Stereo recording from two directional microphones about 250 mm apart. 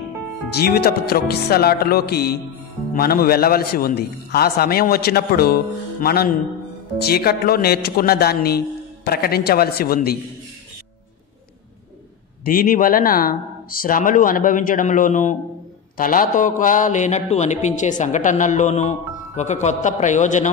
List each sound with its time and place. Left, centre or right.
0.5 s a man's voice: left
12.4 s a man's voice: left